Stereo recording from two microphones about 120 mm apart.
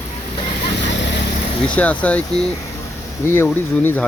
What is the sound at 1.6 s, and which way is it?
Speech, 10° left (ahead or behind).